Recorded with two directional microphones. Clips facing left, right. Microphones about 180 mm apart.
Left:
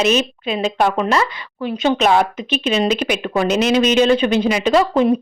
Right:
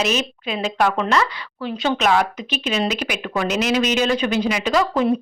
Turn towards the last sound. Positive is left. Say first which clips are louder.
# left 5 dB
turn(degrees=25)  # may be behind; listen again after turning